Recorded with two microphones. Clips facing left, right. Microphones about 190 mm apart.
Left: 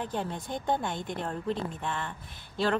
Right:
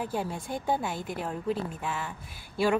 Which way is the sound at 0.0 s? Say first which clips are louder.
Right 1 dB; 10° right (ahead or behind).